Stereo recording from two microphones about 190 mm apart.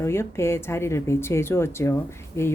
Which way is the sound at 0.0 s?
15° left (ahead or behind).